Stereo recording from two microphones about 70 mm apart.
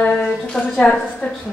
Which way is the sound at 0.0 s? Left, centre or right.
Centre.